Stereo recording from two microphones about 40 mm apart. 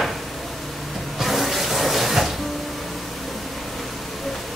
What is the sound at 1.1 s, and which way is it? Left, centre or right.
Water tap, centre.